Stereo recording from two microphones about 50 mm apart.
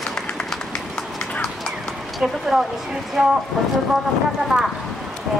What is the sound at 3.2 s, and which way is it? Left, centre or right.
Speech, centre.